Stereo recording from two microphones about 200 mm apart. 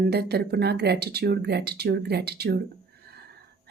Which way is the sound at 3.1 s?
50° right (ahead or behind).